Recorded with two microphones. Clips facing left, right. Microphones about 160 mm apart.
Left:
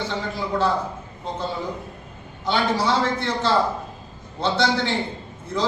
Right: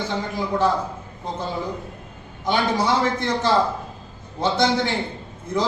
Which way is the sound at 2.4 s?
20° right (ahead or behind).